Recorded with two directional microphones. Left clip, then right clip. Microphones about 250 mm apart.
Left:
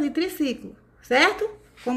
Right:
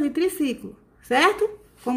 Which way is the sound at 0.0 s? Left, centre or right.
Centre.